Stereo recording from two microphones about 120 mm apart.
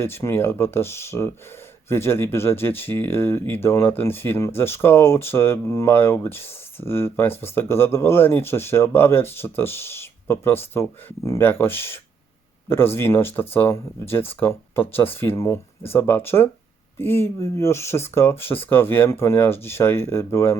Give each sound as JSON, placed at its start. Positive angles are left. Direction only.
{"t": 0.0, "sound": "speech", "side_deg": 20}